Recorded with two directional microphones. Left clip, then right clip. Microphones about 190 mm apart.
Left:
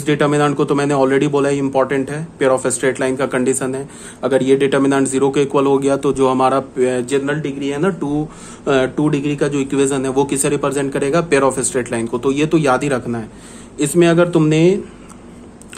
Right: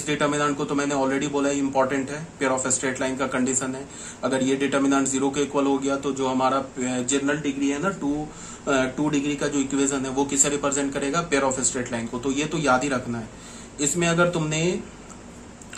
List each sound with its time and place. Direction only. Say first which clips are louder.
0.0 s a man's voice: left 8 dB; 50° left (ahead or behind)